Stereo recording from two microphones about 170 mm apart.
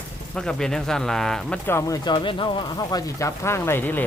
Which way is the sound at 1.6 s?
15° left (ahead or behind).